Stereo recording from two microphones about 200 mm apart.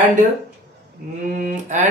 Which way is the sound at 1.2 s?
40° right (ahead or behind).